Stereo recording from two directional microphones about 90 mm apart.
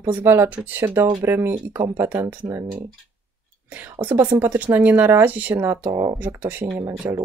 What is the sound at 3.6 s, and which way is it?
Speech, 20° right (ahead or behind).